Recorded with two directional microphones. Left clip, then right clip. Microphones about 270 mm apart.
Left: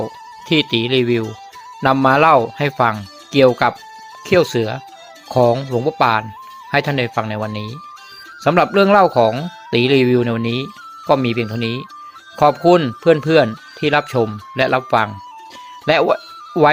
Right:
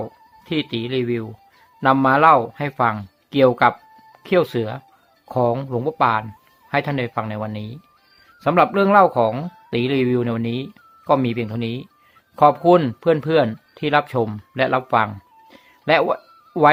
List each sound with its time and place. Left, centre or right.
0.4 s speech: centre